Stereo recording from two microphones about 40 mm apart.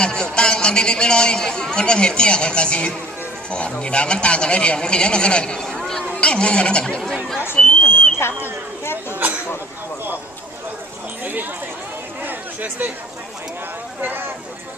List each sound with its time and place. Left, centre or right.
0.0 s a man's voice: left
6.1 s a man's voice: left
7.3 s speech: left
8.8 s a sound: left
11.2 s chatter: right
12.2 s a sound: right
14.0 s speech: right